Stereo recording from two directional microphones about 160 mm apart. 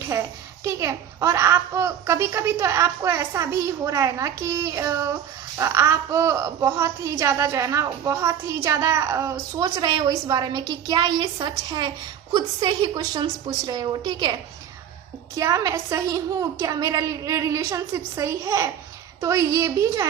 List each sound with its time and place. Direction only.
0.1 s a child's voice: 15° right (ahead or behind)
15.4 s a child's voice: 20° right (ahead or behind)